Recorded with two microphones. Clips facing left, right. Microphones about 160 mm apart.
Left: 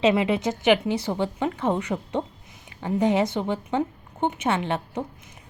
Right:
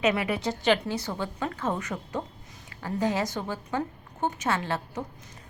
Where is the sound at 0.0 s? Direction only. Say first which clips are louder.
Left 5 dB; 25° left (ahead or behind).